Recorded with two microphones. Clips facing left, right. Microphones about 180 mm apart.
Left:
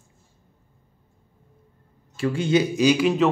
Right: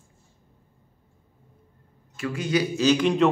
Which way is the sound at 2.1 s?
30° left (ahead or behind).